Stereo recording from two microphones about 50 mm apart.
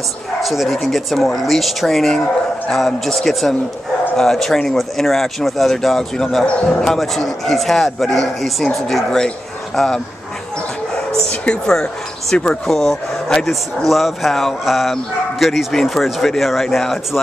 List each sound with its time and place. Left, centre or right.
0.4 s speech: centre
6.4 s a man's voice: left
6.8 s speech: centre
11.4 s speech: centre
13.8 s speech: centre